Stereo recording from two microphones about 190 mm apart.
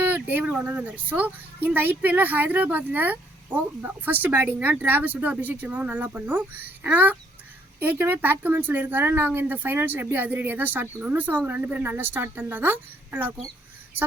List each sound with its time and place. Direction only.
0.0 s speech: 10° right (ahead or behind)